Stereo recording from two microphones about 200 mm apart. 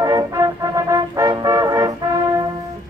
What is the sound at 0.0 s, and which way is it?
Music, 15° right (ahead or behind).